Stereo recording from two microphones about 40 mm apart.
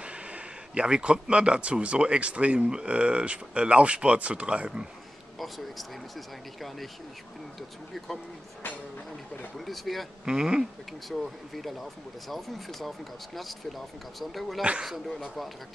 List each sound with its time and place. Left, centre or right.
0.0 s speech: right
5.4 s speech: centre
8.6 s a sound: left
9.7 s speech: centre
10.2 s speech: centre
10.9 s speech: centre